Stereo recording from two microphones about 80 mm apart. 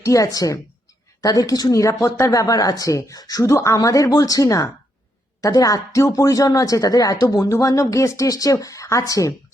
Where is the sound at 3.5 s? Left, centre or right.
Left.